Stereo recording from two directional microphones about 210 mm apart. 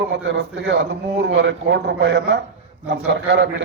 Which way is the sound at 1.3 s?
55° right (ahead or behind).